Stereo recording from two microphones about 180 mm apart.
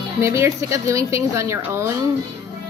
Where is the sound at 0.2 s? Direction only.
15° right (ahead or behind).